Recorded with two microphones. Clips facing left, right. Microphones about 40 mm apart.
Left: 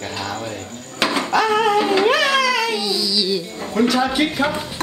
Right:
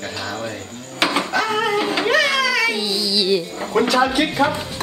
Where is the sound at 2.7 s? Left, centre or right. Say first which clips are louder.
Even; right.